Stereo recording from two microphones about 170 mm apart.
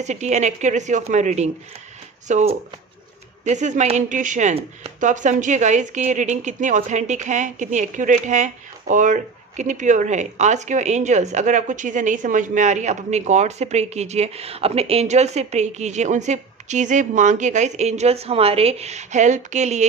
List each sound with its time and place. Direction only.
0.0 s speech: 45° right (ahead or behind)